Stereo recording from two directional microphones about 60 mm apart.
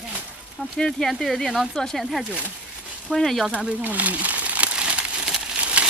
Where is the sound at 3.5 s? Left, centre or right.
Right.